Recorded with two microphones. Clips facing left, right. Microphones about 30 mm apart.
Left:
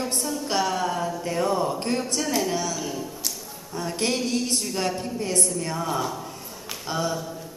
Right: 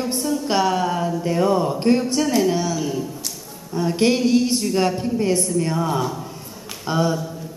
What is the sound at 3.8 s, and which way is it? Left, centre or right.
A woman's voice, centre.